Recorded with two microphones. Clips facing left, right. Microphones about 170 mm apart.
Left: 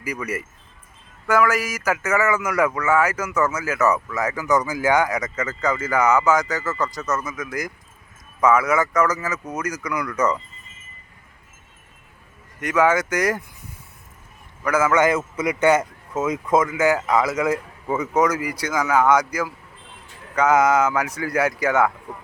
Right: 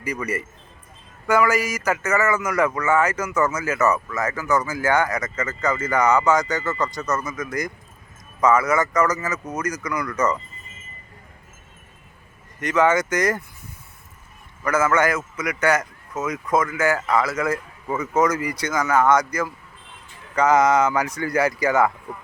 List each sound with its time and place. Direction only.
0.0 s a man's voice: 5° left (ahead or behind)
12.5 s a man's voice: 10° left (ahead or behind)
14.6 s a man's voice: 10° left (ahead or behind)